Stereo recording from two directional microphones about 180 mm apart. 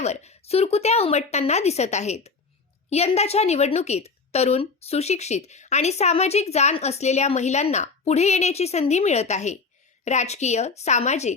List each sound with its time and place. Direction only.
0.0 s a woman's voice: 40° left (ahead or behind)